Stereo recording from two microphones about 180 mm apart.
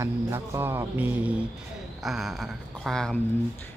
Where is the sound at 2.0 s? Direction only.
Centre (ahead or behind).